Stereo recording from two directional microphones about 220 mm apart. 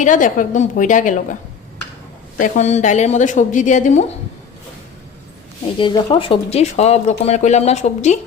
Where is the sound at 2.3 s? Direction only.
35° left (ahead or behind).